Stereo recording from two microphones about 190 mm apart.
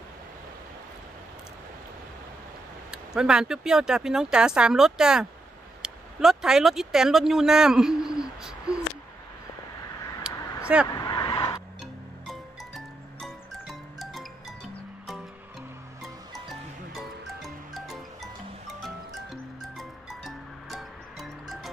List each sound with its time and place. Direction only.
2.9 s speech: 5° right (ahead or behind)
10.3 s a sound: 5° right (ahead or behind)
10.9 s vehicle: 20° left (ahead or behind)
11.8 s music: centre (ahead or behind)
16.9 s music: centre (ahead or behind)
19.8 s music: centre (ahead or behind)